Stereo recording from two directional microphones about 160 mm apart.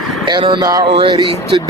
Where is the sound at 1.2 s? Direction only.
35° right (ahead or behind).